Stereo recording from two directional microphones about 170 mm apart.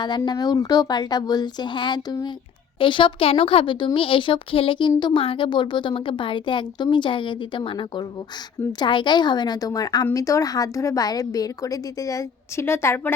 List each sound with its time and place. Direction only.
0.0 s a woman's voice: 25° left (ahead or behind)